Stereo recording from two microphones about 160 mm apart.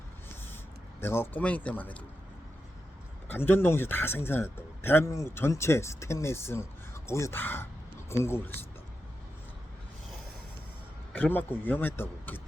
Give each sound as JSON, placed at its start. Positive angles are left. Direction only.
{"t": 1.0, "sound": "a man's voice", "side_deg": 15}
{"t": 3.2, "sound": "a man's voice", "side_deg": 15}
{"t": 11.1, "sound": "a man's voice", "side_deg": 10}